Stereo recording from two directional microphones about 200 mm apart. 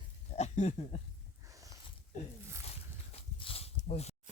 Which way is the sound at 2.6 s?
30° left (ahead or behind).